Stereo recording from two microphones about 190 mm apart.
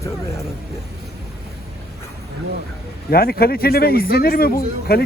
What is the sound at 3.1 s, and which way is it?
A man's voice, 50° left (ahead or behind).